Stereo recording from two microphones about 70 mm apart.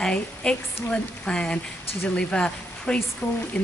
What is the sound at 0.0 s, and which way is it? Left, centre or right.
Speech, centre.